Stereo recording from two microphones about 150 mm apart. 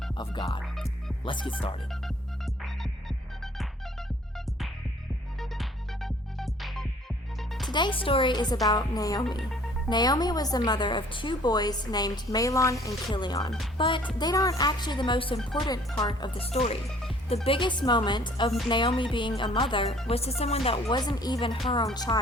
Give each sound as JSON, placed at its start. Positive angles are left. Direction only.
{"t": 0.1, "sound": "music", "side_deg": 30}
{"t": 0.6, "sound": "music", "side_deg": 0}
{"t": 1.2, "sound": "speech", "side_deg": 35}
{"t": 5.4, "sound": "music", "side_deg": 0}
{"t": 7.7, "sound": "a woman's voice", "side_deg": 30}
{"t": 15.4, "sound": "speech", "side_deg": 0}
{"t": 16.0, "sound": "a woman's voice", "side_deg": 30}
{"t": 16.5, "sound": "speech", "side_deg": 45}
{"t": 20.9, "sound": "a woman's voice", "side_deg": 30}